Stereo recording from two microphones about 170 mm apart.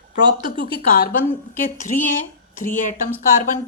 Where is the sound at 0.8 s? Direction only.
55° left (ahead or behind).